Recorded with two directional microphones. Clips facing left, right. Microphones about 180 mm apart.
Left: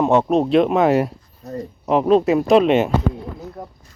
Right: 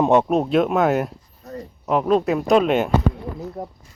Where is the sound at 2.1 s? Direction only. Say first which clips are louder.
Left 3 dB; centre (ahead or behind).